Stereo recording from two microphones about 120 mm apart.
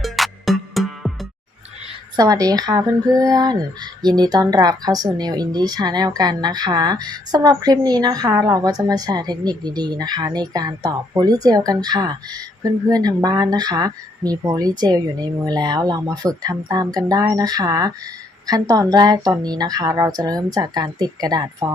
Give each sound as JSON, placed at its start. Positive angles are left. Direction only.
{"t": 0.0, "sound": "music", "side_deg": 0}
{"t": 2.1, "sound": "speech", "side_deg": -30}